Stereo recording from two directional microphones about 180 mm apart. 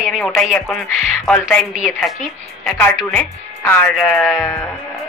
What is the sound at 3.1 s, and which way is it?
Speech, 10° left (ahead or behind).